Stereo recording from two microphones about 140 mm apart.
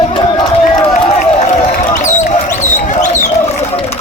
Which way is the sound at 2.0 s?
60° left (ahead or behind).